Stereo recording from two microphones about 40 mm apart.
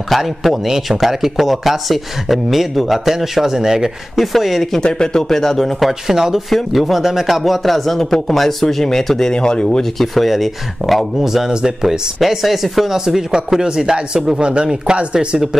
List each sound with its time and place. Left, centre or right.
0.1 s speech: centre
4.2 s speech: centre
4.8 s speech: centre
5.9 s speech: centre
6.5 s speech: centre
9.9 s speech: centre
12.2 s speech: centre; by 14.7 s right
15.2 s speech: centre